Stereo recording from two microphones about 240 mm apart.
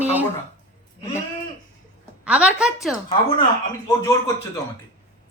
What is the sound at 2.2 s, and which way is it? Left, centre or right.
Speech, centre.